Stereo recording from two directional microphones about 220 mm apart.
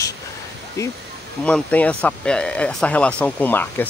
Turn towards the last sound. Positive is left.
turn(degrees=10)  # may be behind; listen again after turning